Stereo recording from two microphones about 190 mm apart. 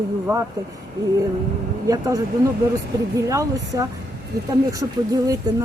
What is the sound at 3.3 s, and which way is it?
Speech, 15° right (ahead or behind).